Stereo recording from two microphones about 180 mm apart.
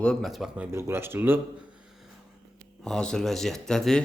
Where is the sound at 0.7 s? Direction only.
15° right (ahead or behind).